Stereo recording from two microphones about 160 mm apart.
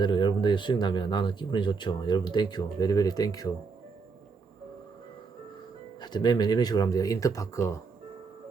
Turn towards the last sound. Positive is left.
turn(degrees=20)  # may be behind; listen again after turning